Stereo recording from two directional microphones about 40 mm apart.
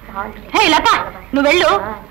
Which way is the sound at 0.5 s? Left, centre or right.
Right.